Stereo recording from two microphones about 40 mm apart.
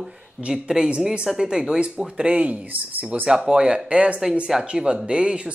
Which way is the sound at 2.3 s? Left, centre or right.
Right.